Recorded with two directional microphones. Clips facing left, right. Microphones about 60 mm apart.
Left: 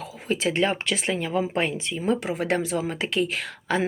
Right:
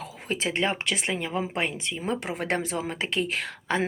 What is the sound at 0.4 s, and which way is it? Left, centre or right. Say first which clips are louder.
Speech: left 3 dB; right.